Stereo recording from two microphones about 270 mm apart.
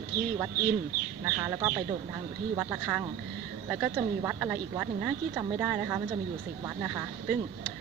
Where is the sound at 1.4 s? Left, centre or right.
Centre.